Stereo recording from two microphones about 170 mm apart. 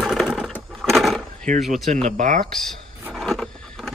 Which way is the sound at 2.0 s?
45° right (ahead or behind).